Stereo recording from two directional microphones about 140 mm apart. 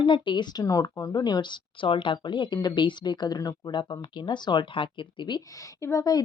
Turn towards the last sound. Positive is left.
turn(degrees=25)  # may be behind; listen again after turning